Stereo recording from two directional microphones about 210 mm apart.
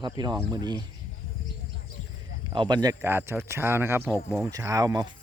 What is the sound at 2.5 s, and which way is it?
Speech, 20° right (ahead or behind).